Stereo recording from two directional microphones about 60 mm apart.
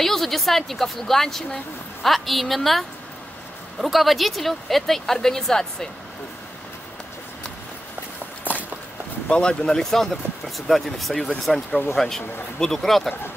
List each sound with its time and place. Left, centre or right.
0.0 s speech: centre
3.8 s speech: centre
8.5 s walk: left
9.3 s speech: centre